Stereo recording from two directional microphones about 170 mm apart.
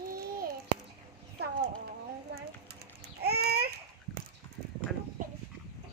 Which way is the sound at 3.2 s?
70° right (ahead or behind).